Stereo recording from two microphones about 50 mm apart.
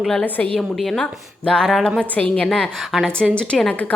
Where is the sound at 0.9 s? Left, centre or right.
Centre.